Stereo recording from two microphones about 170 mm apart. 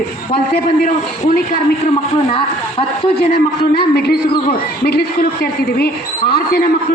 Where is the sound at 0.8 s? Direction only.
45° left (ahead or behind).